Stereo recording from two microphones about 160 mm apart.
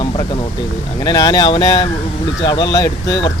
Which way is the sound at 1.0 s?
25° left (ahead or behind).